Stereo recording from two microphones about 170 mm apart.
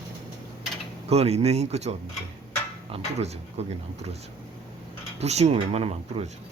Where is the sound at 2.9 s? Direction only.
40° right (ahead or behind).